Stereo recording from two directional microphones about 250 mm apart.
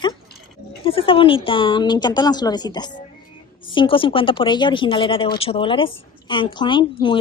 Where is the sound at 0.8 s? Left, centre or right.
Left.